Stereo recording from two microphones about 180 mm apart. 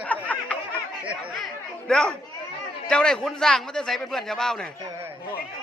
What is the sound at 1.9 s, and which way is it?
A man's voice, 5° left (ahead or behind).